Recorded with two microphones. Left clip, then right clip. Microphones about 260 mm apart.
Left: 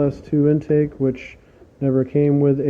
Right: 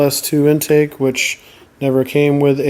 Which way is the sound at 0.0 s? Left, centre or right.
Centre.